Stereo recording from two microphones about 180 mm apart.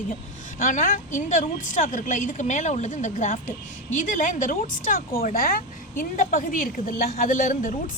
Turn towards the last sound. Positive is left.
turn(degrees=45)  # may be behind; listen again after turning